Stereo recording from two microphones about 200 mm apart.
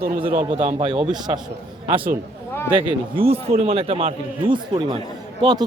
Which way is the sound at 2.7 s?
25° right (ahead or behind).